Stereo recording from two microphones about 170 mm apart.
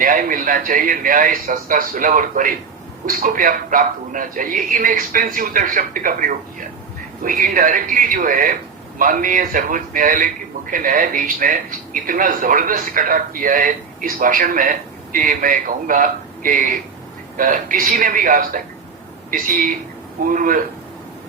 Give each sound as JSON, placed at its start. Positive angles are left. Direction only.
{"t": 0.0, "sound": "speech", "side_deg": -55}